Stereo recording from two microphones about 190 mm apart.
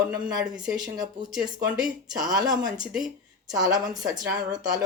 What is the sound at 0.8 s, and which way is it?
Speech, 20° right (ahead or behind).